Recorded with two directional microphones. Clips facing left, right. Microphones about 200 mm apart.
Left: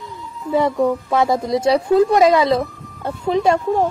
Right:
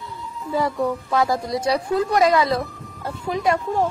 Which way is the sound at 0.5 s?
20° left (ahead or behind).